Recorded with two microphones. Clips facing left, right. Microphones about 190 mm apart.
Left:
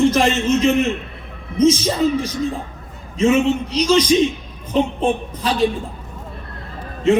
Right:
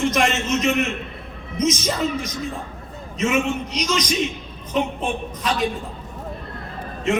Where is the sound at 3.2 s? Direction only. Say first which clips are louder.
Left 6 dB; 30° left (ahead or behind).